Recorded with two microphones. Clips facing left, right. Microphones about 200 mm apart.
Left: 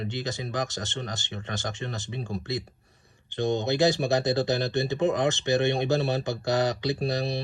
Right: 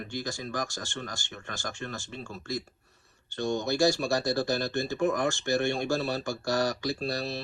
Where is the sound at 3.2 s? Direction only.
20° left (ahead or behind).